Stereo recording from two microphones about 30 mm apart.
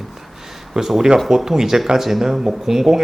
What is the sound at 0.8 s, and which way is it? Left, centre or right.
Speech, centre.